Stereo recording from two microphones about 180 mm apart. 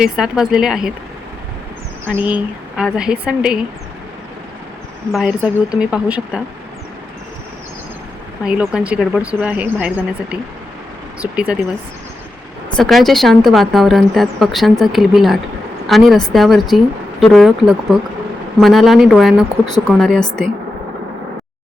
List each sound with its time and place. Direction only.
0.0 s a woman's voice: 5° right (ahead or behind)
2.0 s a woman's voice: 10° right (ahead or behind)
5.8 s a woman's voice: 5° right (ahead or behind)
8.4 s speech: 5° right (ahead or behind)
12.7 s a woman's voice: centre (ahead or behind)